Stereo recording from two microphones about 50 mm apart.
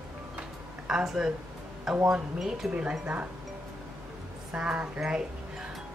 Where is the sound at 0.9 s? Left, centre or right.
Centre.